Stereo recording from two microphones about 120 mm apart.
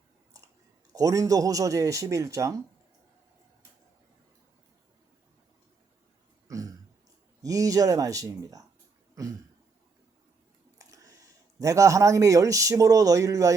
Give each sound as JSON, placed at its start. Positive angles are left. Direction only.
{"t": 0.9, "sound": "speech", "side_deg": -30}
{"t": 6.5, "sound": "throat clearing", "side_deg": -30}
{"t": 7.4, "sound": "speech", "side_deg": -30}
{"t": 10.8, "sound": "speech", "side_deg": -30}